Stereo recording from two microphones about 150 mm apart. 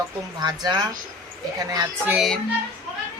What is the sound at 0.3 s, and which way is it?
Speech, 25° right (ahead or behind).